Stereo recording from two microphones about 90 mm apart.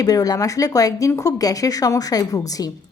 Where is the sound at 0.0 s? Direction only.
45° left (ahead or behind).